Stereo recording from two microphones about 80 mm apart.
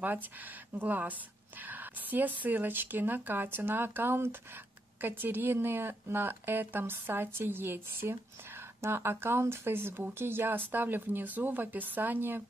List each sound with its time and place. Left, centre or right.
0.0 s speech: right